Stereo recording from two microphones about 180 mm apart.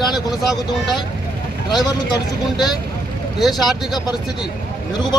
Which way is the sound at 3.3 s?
Centre (ahead or behind).